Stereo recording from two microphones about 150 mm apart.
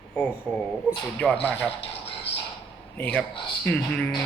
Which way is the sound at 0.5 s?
Centre (ahead or behind).